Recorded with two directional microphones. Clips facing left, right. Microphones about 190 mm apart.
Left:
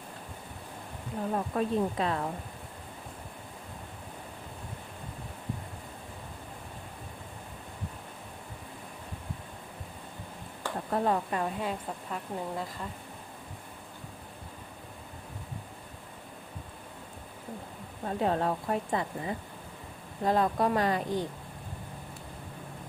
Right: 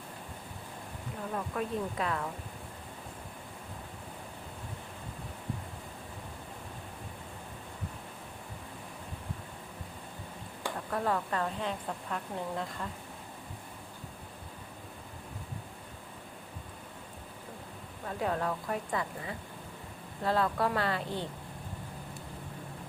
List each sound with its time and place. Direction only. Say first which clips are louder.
1.3 s speech: left 5 dB; 30° left (ahead or behind)
10.8 s speech: left 4 dB; 25° left (ahead or behind); by 12.9 s 5° left (ahead or behind)
18.0 s speech: left 4 dB; 30° left (ahead or behind)